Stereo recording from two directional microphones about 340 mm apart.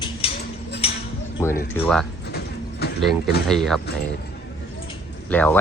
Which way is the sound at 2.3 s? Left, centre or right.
Left.